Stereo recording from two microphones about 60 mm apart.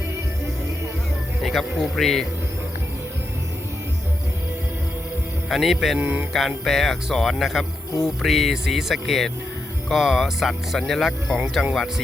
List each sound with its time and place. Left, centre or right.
1.4 s speech: centre
5.5 s speech: centre
6.0 s mantra: right
6.7 s speech: centre